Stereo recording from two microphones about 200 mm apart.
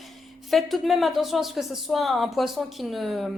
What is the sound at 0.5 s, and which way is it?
A woman's voice, centre (ahead or behind).